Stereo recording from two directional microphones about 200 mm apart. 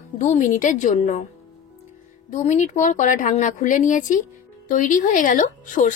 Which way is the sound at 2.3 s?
35° left (ahead or behind).